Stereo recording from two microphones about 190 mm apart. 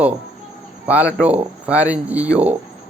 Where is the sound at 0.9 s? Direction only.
10° right (ahead or behind).